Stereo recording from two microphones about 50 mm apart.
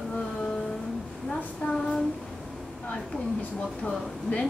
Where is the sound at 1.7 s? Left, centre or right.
Centre.